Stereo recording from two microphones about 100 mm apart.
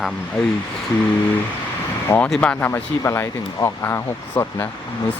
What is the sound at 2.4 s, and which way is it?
Speech, 15° left (ahead or behind).